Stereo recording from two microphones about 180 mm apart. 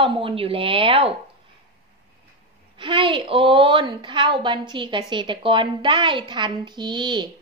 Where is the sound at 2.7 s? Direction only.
30° right (ahead or behind).